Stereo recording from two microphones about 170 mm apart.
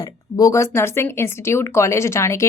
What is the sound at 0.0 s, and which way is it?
Speech, 20° left (ahead or behind).